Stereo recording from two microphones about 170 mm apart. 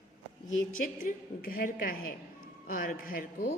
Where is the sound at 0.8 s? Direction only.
55° left (ahead or behind).